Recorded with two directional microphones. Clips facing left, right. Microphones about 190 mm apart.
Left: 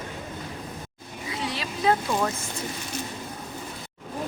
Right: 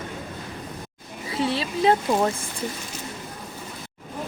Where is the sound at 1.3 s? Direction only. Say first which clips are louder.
Right 7 dB; 30° right (ahead or behind).